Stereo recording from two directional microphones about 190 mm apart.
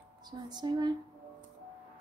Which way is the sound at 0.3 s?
20° right (ahead or behind).